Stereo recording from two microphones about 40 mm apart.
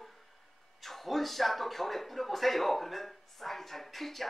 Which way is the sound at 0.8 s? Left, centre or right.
Centre.